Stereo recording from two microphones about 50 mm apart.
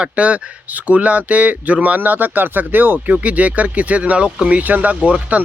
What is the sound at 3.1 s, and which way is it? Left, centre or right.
Speech, right.